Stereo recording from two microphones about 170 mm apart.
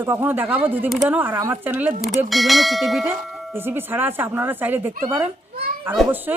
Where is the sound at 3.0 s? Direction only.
15° right (ahead or behind).